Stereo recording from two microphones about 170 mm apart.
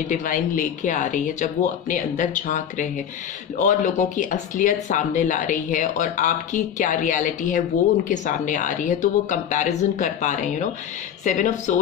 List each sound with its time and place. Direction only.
0.1 s speech: 50° left (ahead or behind)